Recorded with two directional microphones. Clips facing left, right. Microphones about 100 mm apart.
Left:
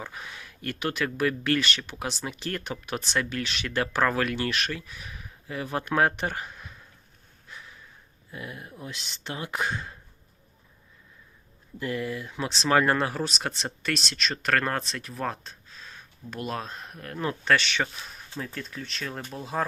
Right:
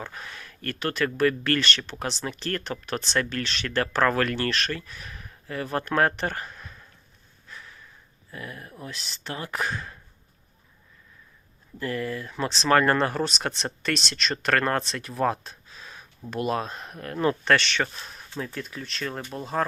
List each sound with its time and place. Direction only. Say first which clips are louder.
0.0 s speech: right 1 dB; 10° left (ahead or behind)
8.3 s speech: even; 20° left (ahead or behind)
11.8 s speech: right 1 dB; 15° left (ahead or behind)